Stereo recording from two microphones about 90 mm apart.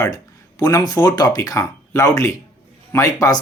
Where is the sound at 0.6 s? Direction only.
45° left (ahead or behind).